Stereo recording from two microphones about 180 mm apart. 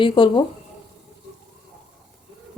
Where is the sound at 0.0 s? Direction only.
30° left (ahead or behind).